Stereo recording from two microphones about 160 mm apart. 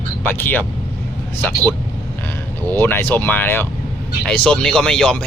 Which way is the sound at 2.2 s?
15° left (ahead or behind).